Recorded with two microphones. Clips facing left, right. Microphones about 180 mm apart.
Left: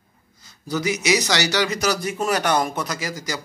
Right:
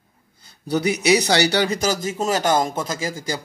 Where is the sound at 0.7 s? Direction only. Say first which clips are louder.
Right 3 dB; 30° right (ahead or behind).